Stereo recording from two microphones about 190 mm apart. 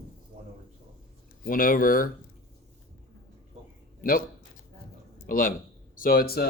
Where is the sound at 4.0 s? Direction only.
50° left (ahead or behind).